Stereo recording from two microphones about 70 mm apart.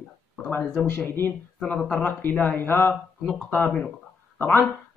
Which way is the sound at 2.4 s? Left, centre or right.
Left.